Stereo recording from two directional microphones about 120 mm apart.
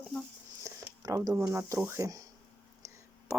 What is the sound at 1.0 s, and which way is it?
Speech, 30° right (ahead or behind).